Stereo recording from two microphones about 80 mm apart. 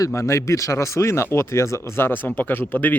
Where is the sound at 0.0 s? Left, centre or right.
Left.